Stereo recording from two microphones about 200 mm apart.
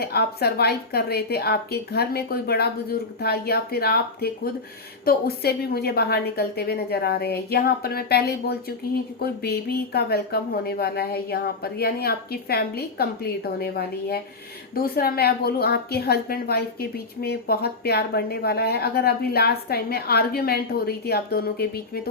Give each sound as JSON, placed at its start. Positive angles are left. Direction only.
{"t": 0.0, "sound": "a woman's voice", "side_deg": 50}